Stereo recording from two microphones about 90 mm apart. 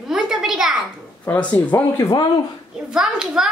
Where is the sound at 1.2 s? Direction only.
15° left (ahead or behind).